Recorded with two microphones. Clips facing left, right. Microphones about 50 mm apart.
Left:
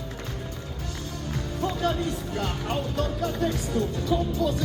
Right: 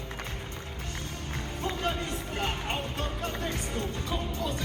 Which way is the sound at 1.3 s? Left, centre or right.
Right.